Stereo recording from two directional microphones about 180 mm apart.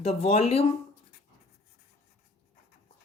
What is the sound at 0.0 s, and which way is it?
Speech, 35° left (ahead or behind).